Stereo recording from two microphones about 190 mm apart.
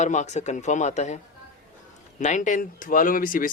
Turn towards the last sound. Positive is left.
turn(degrees=45)  # may be behind; listen again after turning